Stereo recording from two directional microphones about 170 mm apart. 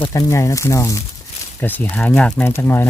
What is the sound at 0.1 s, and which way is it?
Speech, 20° left (ahead or behind).